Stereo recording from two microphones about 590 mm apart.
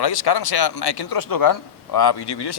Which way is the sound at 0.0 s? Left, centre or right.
Left.